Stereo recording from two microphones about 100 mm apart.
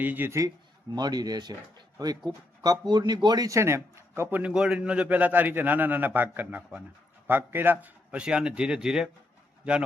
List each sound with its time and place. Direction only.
0.0 s speech: 20° right (ahead or behind)
0.9 s a man's voice: 45° right (ahead or behind); by 9.0 s 5° right (ahead or behind)